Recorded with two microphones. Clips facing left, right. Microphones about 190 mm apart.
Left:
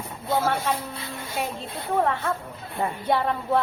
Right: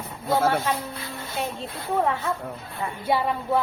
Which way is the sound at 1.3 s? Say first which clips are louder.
Even; 20° left (ahead or behind).